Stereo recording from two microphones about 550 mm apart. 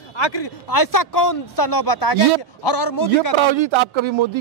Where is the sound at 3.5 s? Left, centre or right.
Right.